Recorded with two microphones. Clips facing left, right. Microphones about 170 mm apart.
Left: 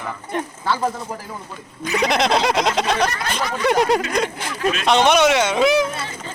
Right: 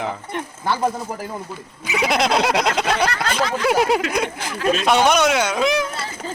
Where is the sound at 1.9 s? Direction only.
5° right (ahead or behind).